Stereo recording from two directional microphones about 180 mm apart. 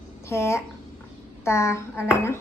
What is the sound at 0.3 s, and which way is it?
A child's voice, 15° left (ahead or behind).